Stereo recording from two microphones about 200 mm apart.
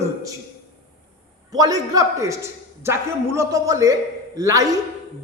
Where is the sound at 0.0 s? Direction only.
15° right (ahead or behind).